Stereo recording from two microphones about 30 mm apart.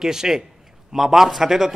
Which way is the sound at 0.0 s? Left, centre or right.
Centre.